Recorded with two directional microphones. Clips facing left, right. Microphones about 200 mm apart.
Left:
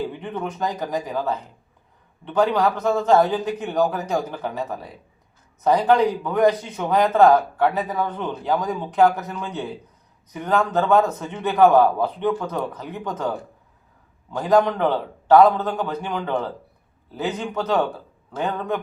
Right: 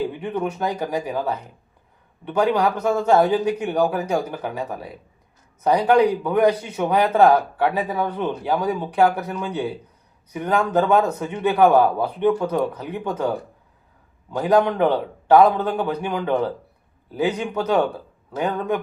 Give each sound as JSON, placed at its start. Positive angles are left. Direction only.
{"t": 0.2, "sound": "a man's voice", "side_deg": -10}
{"t": 14.4, "sound": "a man's voice", "side_deg": -15}